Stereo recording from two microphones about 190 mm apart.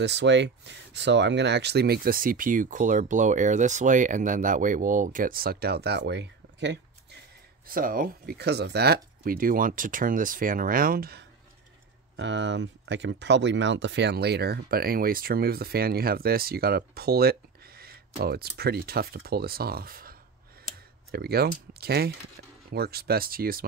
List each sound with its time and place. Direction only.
0.0 s speech: 65° right (ahead or behind)
7.6 s speech: 50° right (ahead or behind)
12.2 s speech: 70° right (ahead or behind); by 23.6 s 50° right (ahead or behind)